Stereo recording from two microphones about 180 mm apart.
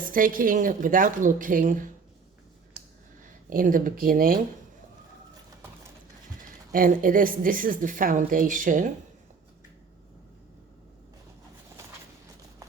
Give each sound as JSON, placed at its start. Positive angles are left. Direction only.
{"t": 0.0, "sound": "speech", "side_deg": -50}
{"t": 3.5, "sound": "speech", "side_deg": -50}
{"t": 6.7, "sound": "speech", "side_deg": -50}